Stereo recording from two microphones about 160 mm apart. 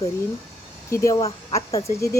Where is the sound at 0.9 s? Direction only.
20° left (ahead or behind).